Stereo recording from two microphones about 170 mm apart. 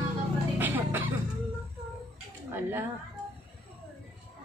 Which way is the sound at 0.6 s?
10° right (ahead or behind).